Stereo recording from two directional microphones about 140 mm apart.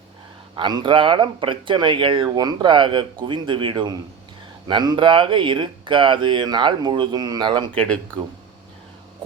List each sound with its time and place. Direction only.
0.5 s speech: 30° right (ahead or behind)
7.7 s speech: 10° left (ahead or behind)